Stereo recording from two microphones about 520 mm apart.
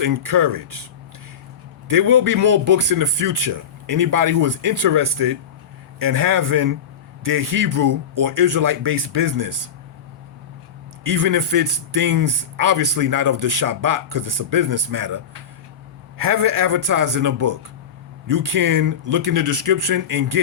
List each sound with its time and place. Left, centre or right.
0.0 s a man's voice: right
1.9 s a man's voice: right
11.0 s a man's voice: right